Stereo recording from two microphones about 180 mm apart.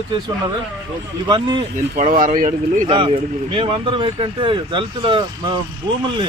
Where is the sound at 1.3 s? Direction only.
25° right (ahead or behind).